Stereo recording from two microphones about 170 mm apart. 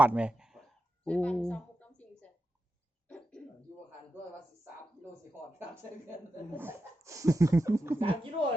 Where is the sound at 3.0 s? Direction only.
5° left (ahead or behind).